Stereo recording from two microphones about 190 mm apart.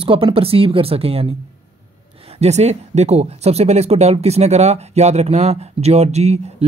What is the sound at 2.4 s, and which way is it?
Speech, 35° right (ahead or behind).